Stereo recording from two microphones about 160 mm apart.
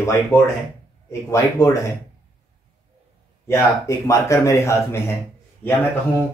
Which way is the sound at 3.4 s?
15° left (ahead or behind).